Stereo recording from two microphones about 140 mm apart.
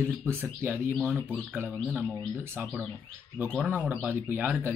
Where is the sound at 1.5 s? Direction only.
15° right (ahead or behind).